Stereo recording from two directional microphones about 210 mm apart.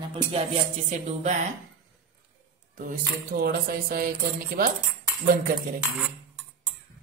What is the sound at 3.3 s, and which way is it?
Speech, 45° right (ahead or behind).